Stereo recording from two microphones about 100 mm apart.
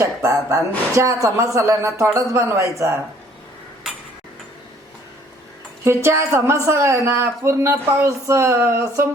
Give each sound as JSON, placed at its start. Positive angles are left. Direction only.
{"t": 0.0, "sound": "a woman's voice", "side_deg": -30}
{"t": 5.8, "sound": "speech", "side_deg": -25}